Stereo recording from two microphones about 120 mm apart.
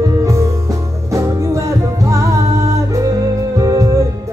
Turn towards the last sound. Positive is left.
turn(degrees=-25)  # may be behind; listen again after turning